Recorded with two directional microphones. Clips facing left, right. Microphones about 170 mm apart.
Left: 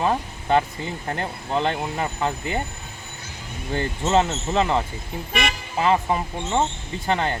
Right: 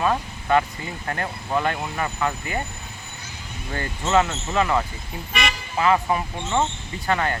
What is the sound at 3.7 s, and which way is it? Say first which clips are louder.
Speech: left 1 dB; 25° left (ahead or behind).